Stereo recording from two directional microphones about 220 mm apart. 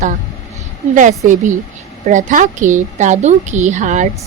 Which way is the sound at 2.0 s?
35° right (ahead or behind).